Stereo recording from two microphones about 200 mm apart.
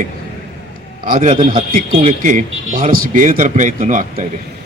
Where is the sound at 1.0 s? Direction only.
40° right (ahead or behind).